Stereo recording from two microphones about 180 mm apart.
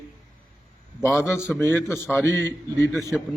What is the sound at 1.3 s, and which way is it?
A man's voice, 10° left (ahead or behind).